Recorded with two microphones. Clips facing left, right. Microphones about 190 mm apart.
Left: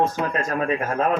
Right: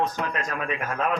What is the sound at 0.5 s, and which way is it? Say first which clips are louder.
Speech: left 7 dB; 40° left (ahead or behind).